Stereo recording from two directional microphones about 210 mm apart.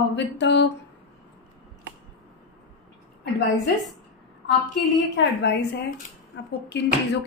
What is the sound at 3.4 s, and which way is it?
Speech, 60° left (ahead or behind).